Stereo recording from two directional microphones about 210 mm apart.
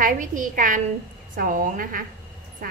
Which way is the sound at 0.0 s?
40° right (ahead or behind).